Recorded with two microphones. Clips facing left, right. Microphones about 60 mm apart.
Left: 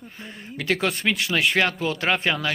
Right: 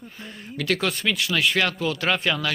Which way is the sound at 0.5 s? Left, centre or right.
Left.